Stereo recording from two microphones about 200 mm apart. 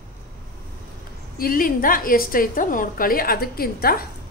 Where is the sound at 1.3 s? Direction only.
45° left (ahead or behind).